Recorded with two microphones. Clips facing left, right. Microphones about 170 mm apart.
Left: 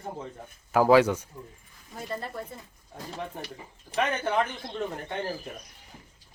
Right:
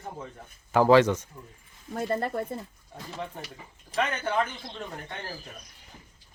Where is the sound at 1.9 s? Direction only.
55° right (ahead or behind).